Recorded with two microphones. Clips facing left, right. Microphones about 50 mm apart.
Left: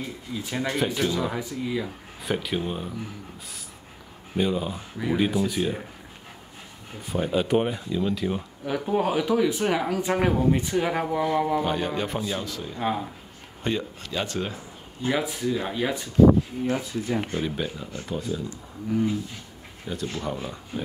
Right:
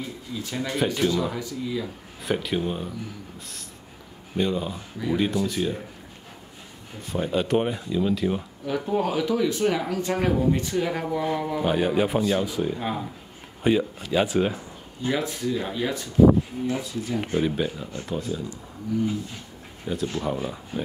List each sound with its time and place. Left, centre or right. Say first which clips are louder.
0.0 s speech: even; centre
0.8 s speech: right 5 dB; centre
1.1 s speech: right 1 dB; centre
2.2 s speech: right 2 dB; centre
4.4 s speech: even; centre
7.1 s speech: even; centre
8.6 s speech: left 1 dB; centre
11.6 s speech: right 4 dB; centre
12.7 s speech: left 2 dB; centre
13.6 s speech: right 6 dB; centre
15.0 s speech: even; centre
16.6 s speech: left 1 dB; left
17.2 s speech: right 4 dB; centre
19.9 s speech: right 3 dB; centre